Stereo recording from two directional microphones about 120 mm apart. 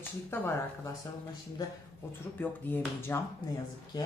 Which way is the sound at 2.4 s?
15° left (ahead or behind).